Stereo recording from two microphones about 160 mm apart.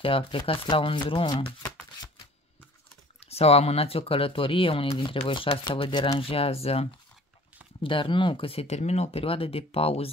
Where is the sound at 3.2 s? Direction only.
40° left (ahead or behind).